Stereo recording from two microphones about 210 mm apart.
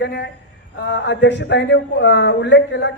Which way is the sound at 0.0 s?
55° left (ahead or behind).